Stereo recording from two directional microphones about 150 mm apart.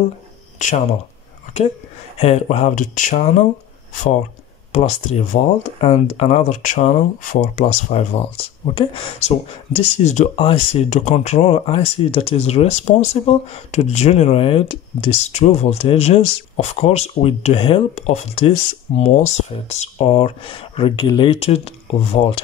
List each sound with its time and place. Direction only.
0.6 s speech: 55° left (ahead or behind)
2.1 s speech: 45° left (ahead or behind)
4.7 s speech: 45° left (ahead or behind)
7.9 s speech: 40° left (ahead or behind)
10.3 s speech: 40° left (ahead or behind)